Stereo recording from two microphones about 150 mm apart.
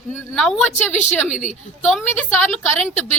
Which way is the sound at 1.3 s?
55° left (ahead or behind).